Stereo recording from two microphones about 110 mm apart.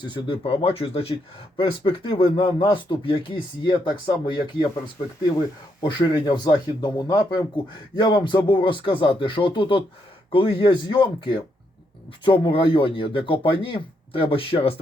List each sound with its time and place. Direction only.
0.0 s speech: 45° left (ahead or behind)
5.8 s speech: 45° left (ahead or behind); by 14.8 s 60° left (ahead or behind)